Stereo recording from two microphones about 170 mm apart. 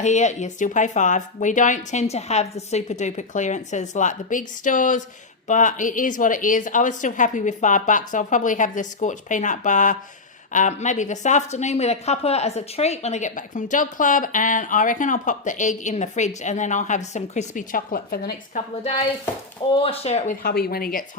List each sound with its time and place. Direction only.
0.0 s a woman's voice: 45° left (ahead or behind); by 18.6 s 65° left (ahead or behind)
19.7 s speech: 35° left (ahead or behind)
20.4 s speech: 65° left (ahead or behind)